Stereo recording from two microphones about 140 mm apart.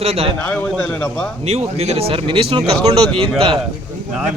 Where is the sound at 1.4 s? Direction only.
45° right (ahead or behind).